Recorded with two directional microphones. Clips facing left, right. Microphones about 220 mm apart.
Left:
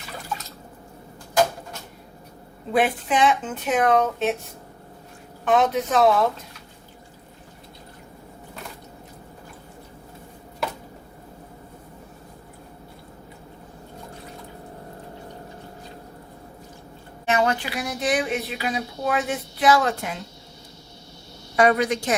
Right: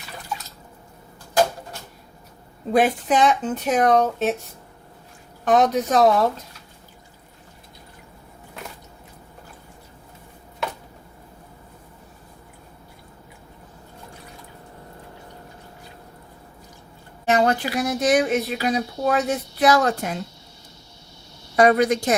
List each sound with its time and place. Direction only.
2.7 s speech: 40° right (ahead or behind)
5.5 s speech: 40° right (ahead or behind)
17.2 s speech: 40° right (ahead or behind)
21.5 s a woman's voice: 40° right (ahead or behind)